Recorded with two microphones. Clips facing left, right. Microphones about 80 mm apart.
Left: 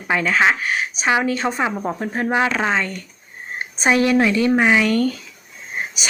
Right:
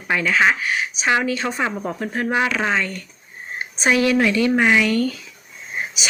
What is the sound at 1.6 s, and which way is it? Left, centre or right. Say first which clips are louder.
Speech: left 2 dB; centre.